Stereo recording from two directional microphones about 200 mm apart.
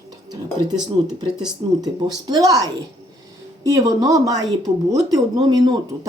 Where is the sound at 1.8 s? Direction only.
20° right (ahead or behind).